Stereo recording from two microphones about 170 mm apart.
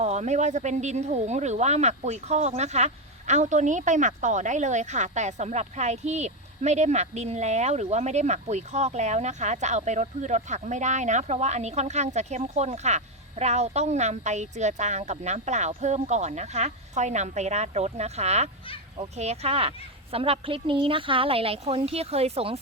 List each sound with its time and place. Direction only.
0.0 s a woman's voice: 40° right (ahead or behind)